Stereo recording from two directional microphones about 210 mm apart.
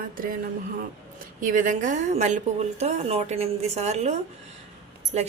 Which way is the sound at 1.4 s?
40° right (ahead or behind).